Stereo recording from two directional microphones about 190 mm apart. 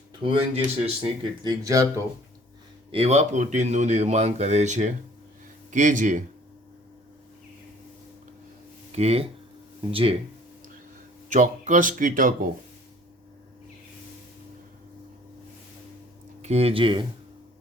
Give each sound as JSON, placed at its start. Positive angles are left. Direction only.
{"t": 0.2, "sound": "speech", "side_deg": -30}
{"t": 2.9, "sound": "speech", "side_deg": -35}
{"t": 8.9, "sound": "speech", "side_deg": -35}
{"t": 11.3, "sound": "speech", "side_deg": -40}
{"t": 16.4, "sound": "speech", "side_deg": -35}